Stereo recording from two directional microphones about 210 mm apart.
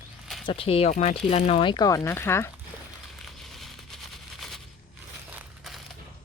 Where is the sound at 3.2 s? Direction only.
Centre (ahead or behind).